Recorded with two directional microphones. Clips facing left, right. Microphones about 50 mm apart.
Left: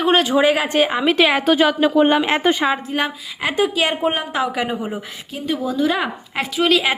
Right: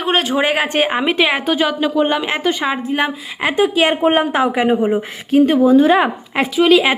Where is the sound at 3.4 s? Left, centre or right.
Right.